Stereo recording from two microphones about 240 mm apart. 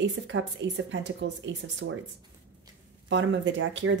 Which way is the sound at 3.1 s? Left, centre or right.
Right.